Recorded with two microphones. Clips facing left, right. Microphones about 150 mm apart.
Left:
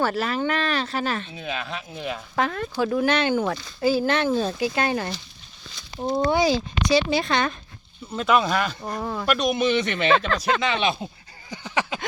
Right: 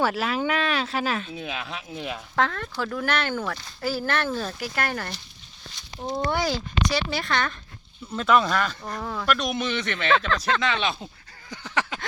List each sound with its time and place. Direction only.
0.0 s speech: centre (ahead or behind)
2.3 s speech: 10° left (ahead or behind)
8.1 s speech: 10° left (ahead or behind)
8.8 s speech: 20° left (ahead or behind)
11.4 s a sound: 10° left (ahead or behind)